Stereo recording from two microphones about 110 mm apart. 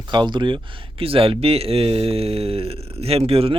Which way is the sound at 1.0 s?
60° right (ahead or behind).